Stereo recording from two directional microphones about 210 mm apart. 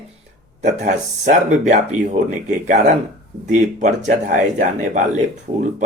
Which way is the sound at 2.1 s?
35° right (ahead or behind).